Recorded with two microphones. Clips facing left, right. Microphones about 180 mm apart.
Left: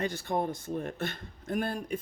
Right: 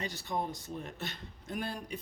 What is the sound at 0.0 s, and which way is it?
A man's voice, 55° left (ahead or behind).